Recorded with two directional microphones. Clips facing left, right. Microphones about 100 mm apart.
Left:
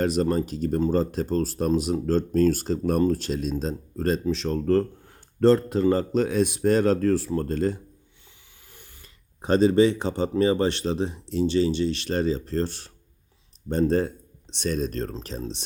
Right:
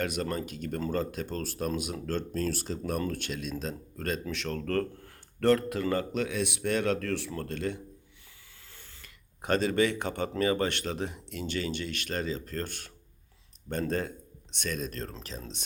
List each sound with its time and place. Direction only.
0.0 s speech: 30° left (ahead or behind)
3.0 s speech: 35° left (ahead or behind)
8.7 s a sound: 15° left (ahead or behind)
10.0 s speech: 20° left (ahead or behind)
14.6 s speech: 35° left (ahead or behind)